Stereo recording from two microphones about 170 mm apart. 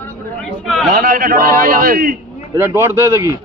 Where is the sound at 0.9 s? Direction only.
55° right (ahead or behind).